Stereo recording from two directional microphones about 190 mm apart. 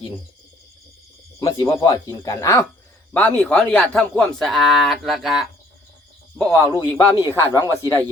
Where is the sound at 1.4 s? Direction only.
15° left (ahead or behind); by 5.4 s centre (ahead or behind).